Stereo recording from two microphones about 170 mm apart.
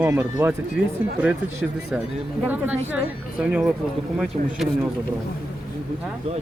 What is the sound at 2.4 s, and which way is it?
Speech, 10° right (ahead or behind).